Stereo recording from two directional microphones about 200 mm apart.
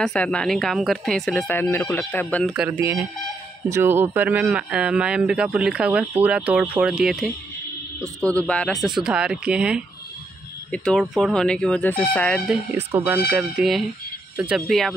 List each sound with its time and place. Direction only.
0.0 s speech: 5° left (ahead or behind)
2.8 s speech: 15° right (ahead or behind)
8.0 s speech: 15° right (ahead or behind)
8.4 s speech: 5° left (ahead or behind)
12.7 s speech: 10° right (ahead or behind)